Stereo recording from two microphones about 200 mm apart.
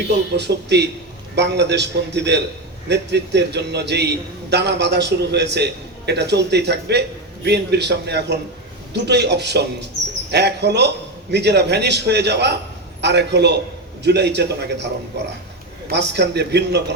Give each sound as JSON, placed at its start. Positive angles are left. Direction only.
{"t": 0.3, "sound": "a man's voice", "side_deg": -55}